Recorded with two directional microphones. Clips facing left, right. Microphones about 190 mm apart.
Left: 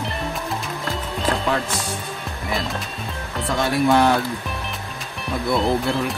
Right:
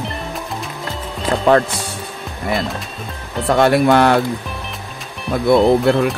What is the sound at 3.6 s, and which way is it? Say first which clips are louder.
Speech: right 5 dB; 70° right (ahead or behind).